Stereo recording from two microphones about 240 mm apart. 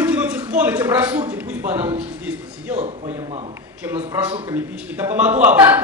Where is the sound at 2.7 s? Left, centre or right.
Right.